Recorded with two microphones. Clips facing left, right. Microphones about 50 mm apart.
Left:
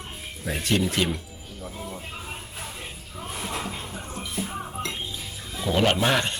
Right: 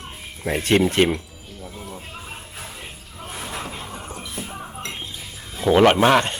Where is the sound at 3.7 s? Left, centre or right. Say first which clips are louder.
Right 1 dB; right.